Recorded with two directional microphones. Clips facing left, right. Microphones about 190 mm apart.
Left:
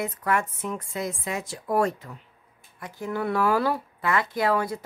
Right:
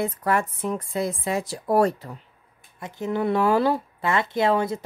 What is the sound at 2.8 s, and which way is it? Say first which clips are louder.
A woman's voice: right 4 dB; 25° right (ahead or behind).